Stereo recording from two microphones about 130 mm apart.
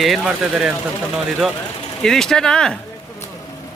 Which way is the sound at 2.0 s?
5° left (ahead or behind).